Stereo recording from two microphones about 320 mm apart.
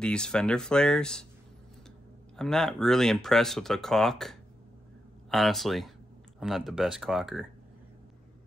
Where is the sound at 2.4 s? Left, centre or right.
Centre.